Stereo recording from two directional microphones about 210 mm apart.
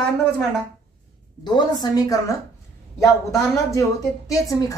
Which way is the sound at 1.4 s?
20° left (ahead or behind).